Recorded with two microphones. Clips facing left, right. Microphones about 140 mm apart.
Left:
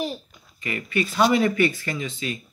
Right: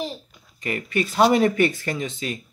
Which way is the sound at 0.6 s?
45° right (ahead or behind).